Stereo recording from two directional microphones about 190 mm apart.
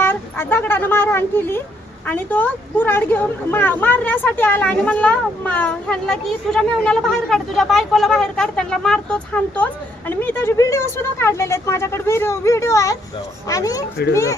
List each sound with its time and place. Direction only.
0.0 s speech: 10° left (ahead or behind)